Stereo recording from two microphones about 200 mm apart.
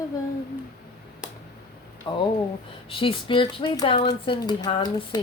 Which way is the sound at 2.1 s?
25° left (ahead or behind).